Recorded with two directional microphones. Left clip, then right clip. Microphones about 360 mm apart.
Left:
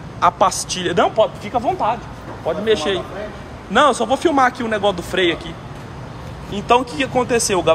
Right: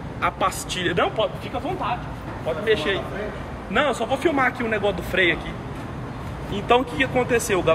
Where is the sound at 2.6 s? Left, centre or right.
Centre.